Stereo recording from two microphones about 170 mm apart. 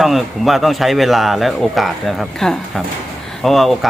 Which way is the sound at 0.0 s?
Centre (ahead or behind).